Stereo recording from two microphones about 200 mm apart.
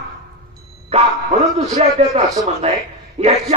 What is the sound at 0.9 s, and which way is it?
Speech, 30° right (ahead or behind).